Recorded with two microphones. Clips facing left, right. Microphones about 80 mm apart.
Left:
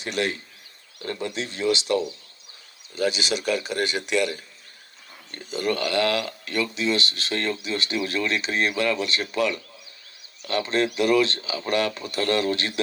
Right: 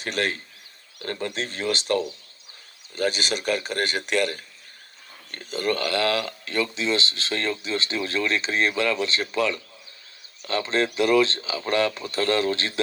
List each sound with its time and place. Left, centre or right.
0.0 s speech: right